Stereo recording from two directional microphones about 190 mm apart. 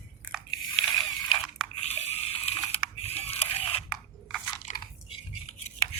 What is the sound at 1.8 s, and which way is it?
Water, 35° left (ahead or behind).